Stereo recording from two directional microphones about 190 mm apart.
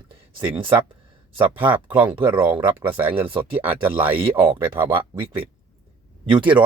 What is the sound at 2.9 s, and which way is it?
Speech, 25° right (ahead or behind).